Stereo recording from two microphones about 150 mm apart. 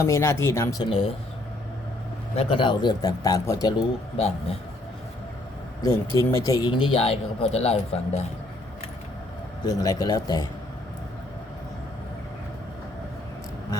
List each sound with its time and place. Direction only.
0.0 s speech: 20° left (ahead or behind)
0.9 s speech: 40° left (ahead or behind)
2.3 s speech: 40° left (ahead or behind)
5.8 s speech: 20° left (ahead or behind)
6.7 s speech: 35° left (ahead or behind)
9.6 s speech: 25° left (ahead or behind)